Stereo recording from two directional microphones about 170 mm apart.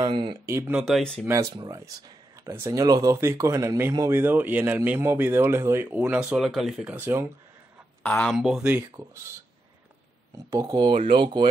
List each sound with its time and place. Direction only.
0.0 s speech: 25° right (ahead or behind)
0.5 s speech: 10° right (ahead or behind)
0.8 s speech: 5° left (ahead or behind)
1.2 s speech: 20° right (ahead or behind); by 6.9 s centre (ahead or behind)
6.9 s speech: 15° right (ahead or behind)
8.0 s speech: 10° left (ahead or behind)
10.3 s speech: 20° right (ahead or behind)